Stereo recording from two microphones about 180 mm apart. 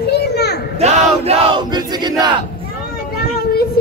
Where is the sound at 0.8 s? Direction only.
35° right (ahead or behind).